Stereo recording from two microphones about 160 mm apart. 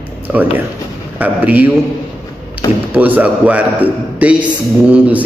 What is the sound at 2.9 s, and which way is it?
A man's voice, 10° right (ahead or behind).